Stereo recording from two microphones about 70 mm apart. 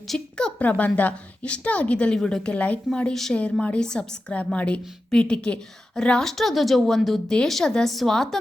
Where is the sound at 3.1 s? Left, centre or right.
Centre.